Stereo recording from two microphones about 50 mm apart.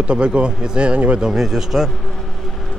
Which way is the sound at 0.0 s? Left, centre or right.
Right.